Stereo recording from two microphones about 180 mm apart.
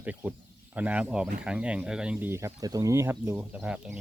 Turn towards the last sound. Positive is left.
turn(degrees=-10)  # may be behind; listen again after turning